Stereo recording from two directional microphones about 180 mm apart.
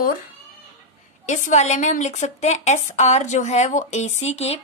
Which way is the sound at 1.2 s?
40° left (ahead or behind).